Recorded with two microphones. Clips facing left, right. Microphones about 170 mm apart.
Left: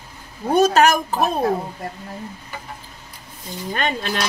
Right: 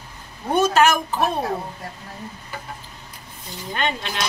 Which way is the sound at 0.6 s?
40° left (ahead or behind).